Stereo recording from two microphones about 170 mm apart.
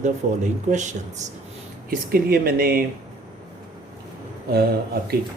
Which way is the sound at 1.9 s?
60° right (ahead or behind).